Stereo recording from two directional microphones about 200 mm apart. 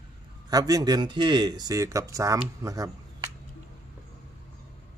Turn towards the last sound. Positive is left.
turn(degrees=-15)  # may be behind; listen again after turning